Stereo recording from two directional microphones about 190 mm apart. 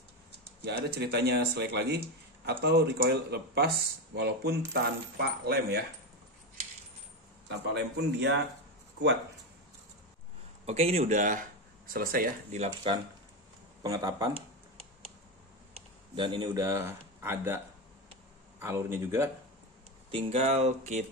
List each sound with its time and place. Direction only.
0.7 s speech: 60° right (ahead or behind)
7.4 s speech: 65° right (ahead or behind)
10.6 s speech: 35° right (ahead or behind)
12.9 s speech: 30° right (ahead or behind)
13.8 s speech: 20° right (ahead or behind)
16.2 s speech: 25° right (ahead or behind)
16.4 s speech: 15° right (ahead or behind)
18.6 s speech: 15° right (ahead or behind)
20.1 s speech: 30° right (ahead or behind)